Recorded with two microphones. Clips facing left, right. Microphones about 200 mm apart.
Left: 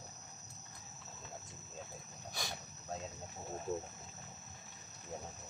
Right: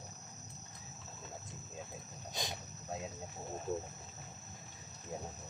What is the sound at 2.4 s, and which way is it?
Wild animals, 20° right (ahead or behind).